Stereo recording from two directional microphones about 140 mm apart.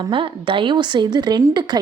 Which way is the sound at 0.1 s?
35° right (ahead or behind).